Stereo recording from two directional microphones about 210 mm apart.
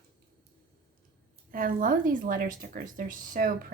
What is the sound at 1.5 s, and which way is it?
Speech, 40° right (ahead or behind).